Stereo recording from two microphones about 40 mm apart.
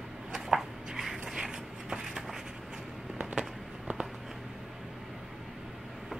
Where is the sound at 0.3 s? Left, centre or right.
Centre.